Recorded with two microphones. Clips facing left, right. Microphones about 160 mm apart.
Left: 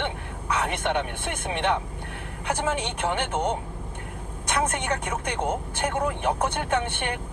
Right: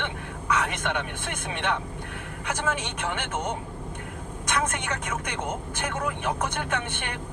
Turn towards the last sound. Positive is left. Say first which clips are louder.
# left 4 dB
turn(degrees=30)  # may be behind; listen again after turning